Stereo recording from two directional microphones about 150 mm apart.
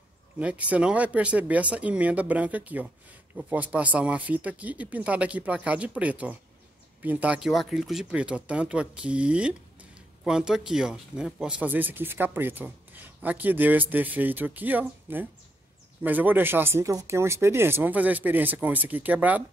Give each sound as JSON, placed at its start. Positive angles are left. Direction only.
{"t": 0.4, "sound": "speech", "side_deg": -10}